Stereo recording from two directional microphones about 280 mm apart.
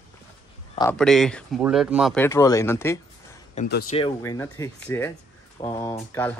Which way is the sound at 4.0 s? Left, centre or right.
Centre.